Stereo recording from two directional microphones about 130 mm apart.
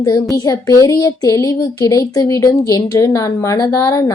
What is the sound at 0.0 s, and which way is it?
Speech, 25° left (ahead or behind).